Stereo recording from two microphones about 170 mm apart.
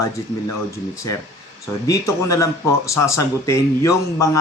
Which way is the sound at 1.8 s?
20° left (ahead or behind).